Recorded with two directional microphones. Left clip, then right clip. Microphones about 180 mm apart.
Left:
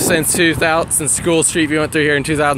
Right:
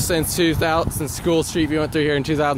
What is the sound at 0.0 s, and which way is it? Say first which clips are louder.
Speech: left 6 dB; centre (ahead or behind).